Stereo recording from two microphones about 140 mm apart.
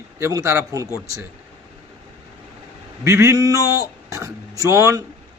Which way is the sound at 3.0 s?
20° right (ahead or behind).